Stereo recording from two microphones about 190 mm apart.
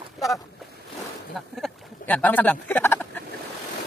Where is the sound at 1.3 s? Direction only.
Centre (ahead or behind).